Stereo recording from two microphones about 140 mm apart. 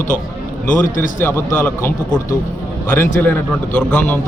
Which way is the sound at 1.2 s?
15° left (ahead or behind).